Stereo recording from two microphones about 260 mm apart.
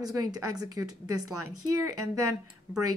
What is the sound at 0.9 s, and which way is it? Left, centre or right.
Speech, right.